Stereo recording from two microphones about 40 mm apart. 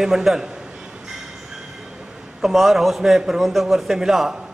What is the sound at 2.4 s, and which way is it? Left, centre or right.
A man's voice, centre.